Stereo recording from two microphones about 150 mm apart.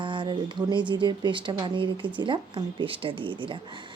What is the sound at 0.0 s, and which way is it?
A woman's voice, 30° right (ahead or behind).